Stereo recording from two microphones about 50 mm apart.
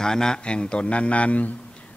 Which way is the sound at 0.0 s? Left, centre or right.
Centre.